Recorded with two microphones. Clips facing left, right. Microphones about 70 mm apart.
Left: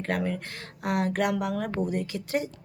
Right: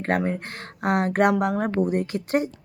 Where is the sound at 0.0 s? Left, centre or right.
Right.